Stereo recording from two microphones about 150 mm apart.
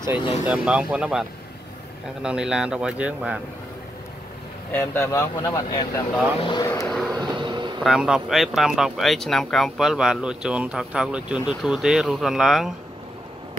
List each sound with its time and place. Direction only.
0.5 s speech: 5° right (ahead or behind)
2.2 s speech: 5° right (ahead or behind)
4.7 s speech: 15° left (ahead or behind)
6.9 s vehicle: 5° left (ahead or behind)
7.2 s a sound: 30° right (ahead or behind)
7.8 s speech: 5° right (ahead or behind)